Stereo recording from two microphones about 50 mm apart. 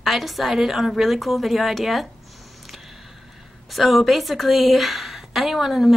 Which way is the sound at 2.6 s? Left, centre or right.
Centre.